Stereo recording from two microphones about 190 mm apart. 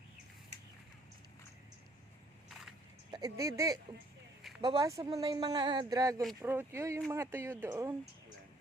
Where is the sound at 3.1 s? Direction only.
20° right (ahead or behind).